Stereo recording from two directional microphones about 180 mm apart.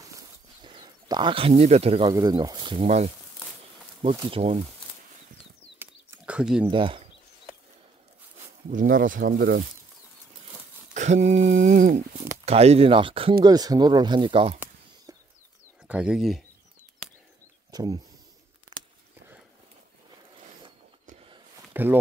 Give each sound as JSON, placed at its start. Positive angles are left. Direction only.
{"t": 0.7, "sound": "speech", "side_deg": -25}
{"t": 2.0, "sound": "speech", "side_deg": -20}
{"t": 4.3, "sound": "speech", "side_deg": -35}
{"t": 5.8, "sound": "a sound", "side_deg": -10}
{"t": 6.7, "sound": "speech", "side_deg": -30}
{"t": 8.6, "sound": "speech", "side_deg": -50}
{"t": 10.9, "sound": "speech", "side_deg": -40}
{"t": 12.4, "sound": "speech", "side_deg": -35}
{"t": 15.1, "sound": "a sound", "side_deg": -20}
{"t": 15.9, "sound": "speech", "side_deg": -5}
{"t": 17.6, "sound": "speech", "side_deg": -20}
{"t": 21.7, "sound": "speech", "side_deg": -10}